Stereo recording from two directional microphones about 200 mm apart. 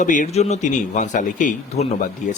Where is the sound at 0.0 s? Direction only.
40° left (ahead or behind).